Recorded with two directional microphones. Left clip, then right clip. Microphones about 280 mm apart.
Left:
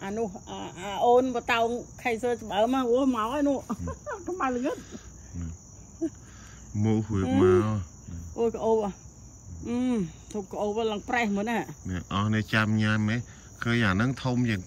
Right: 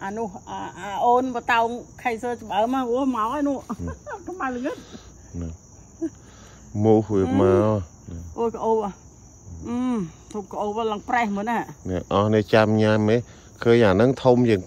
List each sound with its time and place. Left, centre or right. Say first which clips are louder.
0.0 s speech: right 3 dB; centre
4.7 s a sound: right 2 dB; centre
6.8 s speech: right 11 dB; centre